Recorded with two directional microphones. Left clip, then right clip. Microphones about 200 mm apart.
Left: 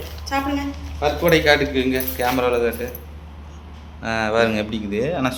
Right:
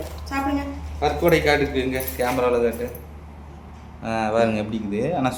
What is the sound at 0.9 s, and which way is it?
Speech, centre (ahead or behind).